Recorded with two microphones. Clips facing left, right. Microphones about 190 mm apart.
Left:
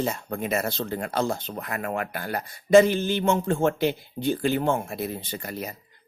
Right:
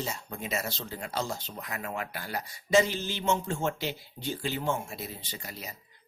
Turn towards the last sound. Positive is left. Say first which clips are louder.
# left 9 dB
turn(degrees=55)  # may be behind; listen again after turning